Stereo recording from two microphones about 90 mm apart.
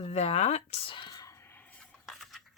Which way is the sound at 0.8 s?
90° left.